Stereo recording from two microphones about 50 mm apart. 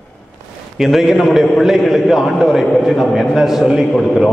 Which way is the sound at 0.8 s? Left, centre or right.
Centre.